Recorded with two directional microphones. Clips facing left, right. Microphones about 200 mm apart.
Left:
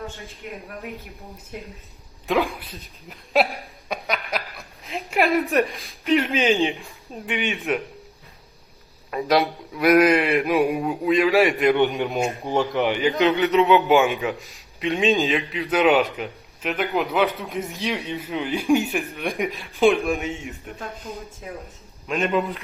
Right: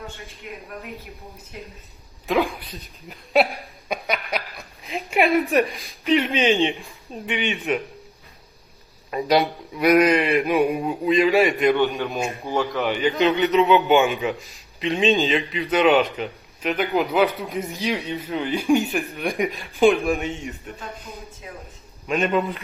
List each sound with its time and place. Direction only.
2.2 s a man's voice: centre (ahead or behind)
9.1 s a man's voice: centre (ahead or behind)
11.9 s speech: 20° left (ahead or behind)
13.2 s a man's voice: centre (ahead or behind)